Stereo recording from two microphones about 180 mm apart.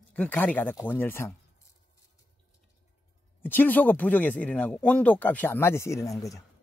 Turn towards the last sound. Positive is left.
turn(degrees=15)  # may be behind; listen again after turning